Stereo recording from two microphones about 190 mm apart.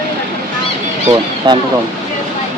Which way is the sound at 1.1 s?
20° right (ahead or behind).